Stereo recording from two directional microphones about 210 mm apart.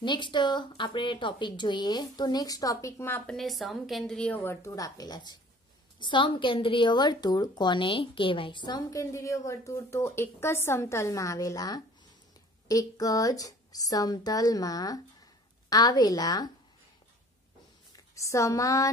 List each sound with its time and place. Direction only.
0.0 s a woman's voice: 20° left (ahead or behind)
17.9 s a woman's voice: 15° left (ahead or behind)